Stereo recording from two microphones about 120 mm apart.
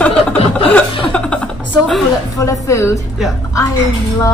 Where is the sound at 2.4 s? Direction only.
25° left (ahead or behind).